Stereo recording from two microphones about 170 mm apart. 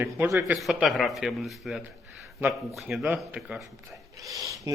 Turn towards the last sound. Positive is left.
turn(degrees=-20)  # may be behind; listen again after turning